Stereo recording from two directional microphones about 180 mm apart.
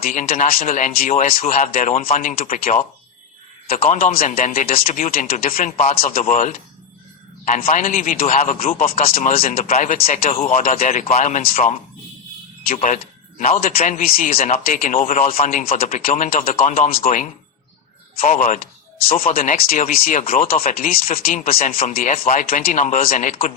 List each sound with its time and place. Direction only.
0.0 s speech: 50° left (ahead or behind)
5.9 s a man's voice: 35° left (ahead or behind)
6.1 s speech: 45° left (ahead or behind)
18.4 s speech: 50° left (ahead or behind)